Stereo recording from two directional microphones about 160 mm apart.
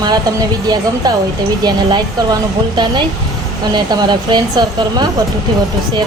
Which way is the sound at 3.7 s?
25° right (ahead or behind).